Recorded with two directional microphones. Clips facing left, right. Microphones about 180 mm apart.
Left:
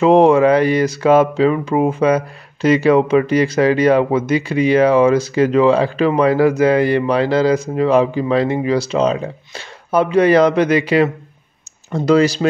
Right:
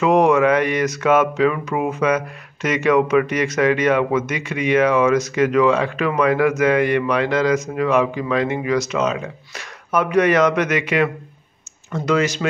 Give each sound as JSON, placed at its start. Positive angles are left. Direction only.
{"t": 0.0, "sound": "speech", "side_deg": 30}